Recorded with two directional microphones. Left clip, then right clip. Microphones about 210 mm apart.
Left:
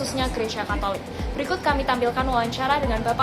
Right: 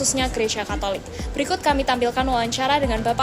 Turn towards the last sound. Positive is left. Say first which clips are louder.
# right 2 dB
turn(degrees=-55)  # may be behind; listen again after turning